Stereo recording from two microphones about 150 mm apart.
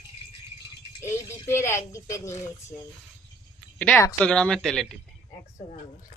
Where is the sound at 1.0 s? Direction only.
15° left (ahead or behind).